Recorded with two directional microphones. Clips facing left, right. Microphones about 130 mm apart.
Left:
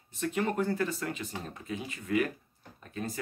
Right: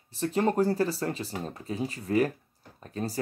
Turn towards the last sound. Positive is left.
turn(degrees=-35)  # may be behind; listen again after turning